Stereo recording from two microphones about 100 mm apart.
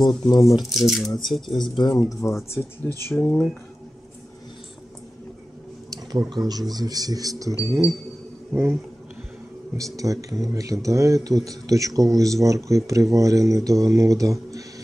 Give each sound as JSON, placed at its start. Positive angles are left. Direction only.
{"t": 0.0, "sound": "speech", "side_deg": 45}
{"t": 0.6, "sound": "speech", "side_deg": 0}
{"t": 1.6, "sound": "speech", "side_deg": 50}
{"t": 2.2, "sound": "speech", "side_deg": 30}
{"t": 3.1, "sound": "speech", "side_deg": 10}
{"t": 5.9, "sound": "a sound", "side_deg": -40}
{"t": 6.7, "sound": "speech", "side_deg": -40}
{"t": 9.8, "sound": "speech", "side_deg": -35}